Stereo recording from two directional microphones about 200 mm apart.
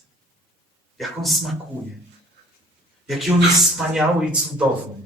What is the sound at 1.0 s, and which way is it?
Speech, centre (ahead or behind).